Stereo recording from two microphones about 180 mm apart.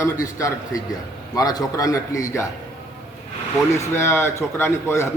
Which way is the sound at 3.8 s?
15° left (ahead or behind).